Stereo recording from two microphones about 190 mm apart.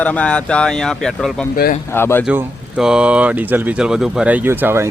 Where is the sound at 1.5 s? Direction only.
45° left (ahead or behind).